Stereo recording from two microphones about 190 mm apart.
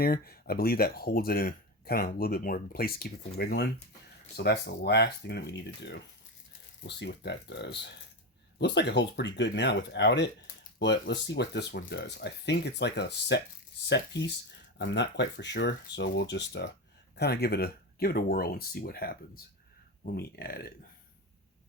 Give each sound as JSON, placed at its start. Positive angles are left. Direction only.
{"t": 0.0, "sound": "speech", "side_deg": 55}